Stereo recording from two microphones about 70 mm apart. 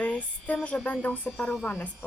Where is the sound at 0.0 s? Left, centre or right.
Centre.